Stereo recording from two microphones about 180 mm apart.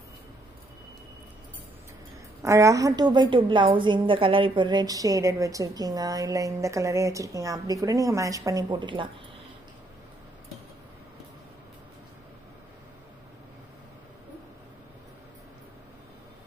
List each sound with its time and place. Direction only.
2.4 s a woman's voice: 15° right (ahead or behind)